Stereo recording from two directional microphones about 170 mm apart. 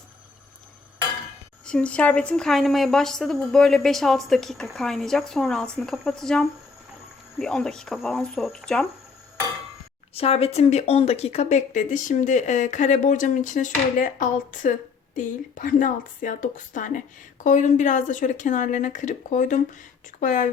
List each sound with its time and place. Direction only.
1.6 s a woman's voice: 5° left (ahead or behind)
10.2 s speech: 35° left (ahead or behind)